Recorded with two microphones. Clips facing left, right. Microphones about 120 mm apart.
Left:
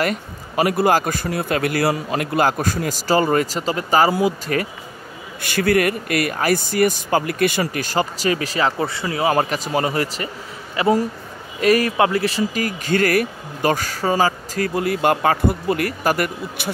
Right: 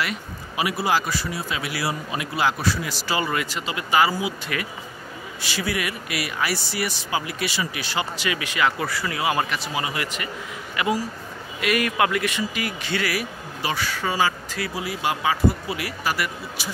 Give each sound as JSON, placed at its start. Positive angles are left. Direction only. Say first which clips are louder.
{"t": 0.0, "sound": "speech", "louder": "left 6 dB", "side_deg": 45}
{"t": 5.4, "sound": "speech", "louder": "left 10 dB", "side_deg": 55}
{"t": 9.3, "sound": "speech", "louder": "left 6 dB", "side_deg": 40}